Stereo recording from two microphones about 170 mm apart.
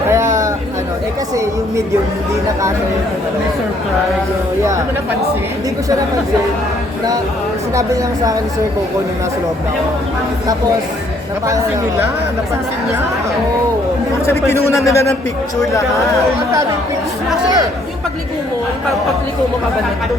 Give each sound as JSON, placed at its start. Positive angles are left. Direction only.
{"t": 0.1, "sound": "a sound", "side_deg": -15}
{"t": 7.8, "sound": "a woman's voice", "side_deg": -20}
{"t": 11.4, "sound": "speech", "side_deg": -15}
{"t": 14.3, "sound": "a man's voice", "side_deg": 15}